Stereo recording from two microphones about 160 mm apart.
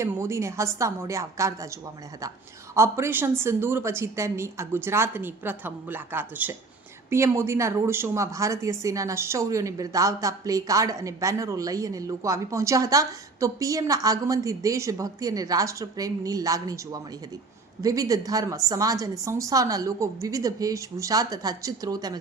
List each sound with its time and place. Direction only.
0.0 s a woman's voice: 15° right (ahead or behind)
2.7 s a woman's voice: 15° right (ahead or behind)